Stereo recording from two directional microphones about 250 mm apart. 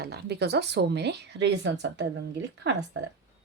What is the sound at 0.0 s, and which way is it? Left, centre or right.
Speech, right.